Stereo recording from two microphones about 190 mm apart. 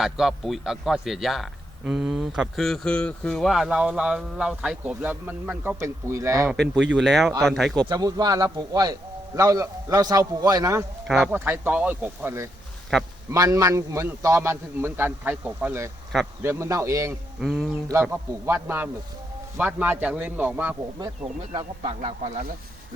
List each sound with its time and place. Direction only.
0.0 s a man's voice: centre (ahead or behind)
6.5 s a man's voice: centre (ahead or behind)
7.8 s a man's voice: 20° right (ahead or behind)
11.1 s a man's voice: centre (ahead or behind)
17.4 s a man's voice: centre (ahead or behind)
17.8 s a man's voice: 10° right (ahead or behind)
21.5 s a man's voice: 30° right (ahead or behind)